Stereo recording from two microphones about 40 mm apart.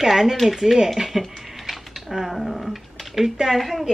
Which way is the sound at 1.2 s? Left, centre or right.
Centre.